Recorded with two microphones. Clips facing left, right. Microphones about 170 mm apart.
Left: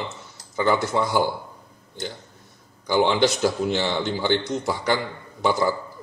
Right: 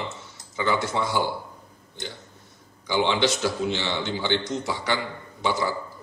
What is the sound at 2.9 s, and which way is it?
A man's voice, 45° left (ahead or behind).